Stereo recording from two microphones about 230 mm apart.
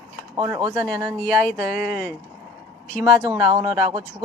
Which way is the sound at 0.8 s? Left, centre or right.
Centre.